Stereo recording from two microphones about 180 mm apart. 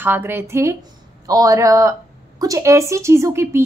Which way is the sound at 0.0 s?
10° right (ahead or behind).